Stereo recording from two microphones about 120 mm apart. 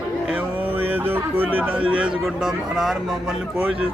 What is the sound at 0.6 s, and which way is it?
Speech, 15° right (ahead or behind).